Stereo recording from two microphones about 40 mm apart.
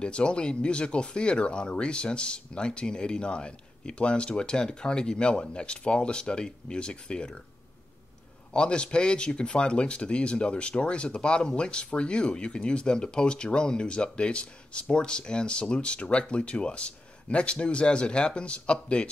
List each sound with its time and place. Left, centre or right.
0.0 s speech: left
8.5 s speech: left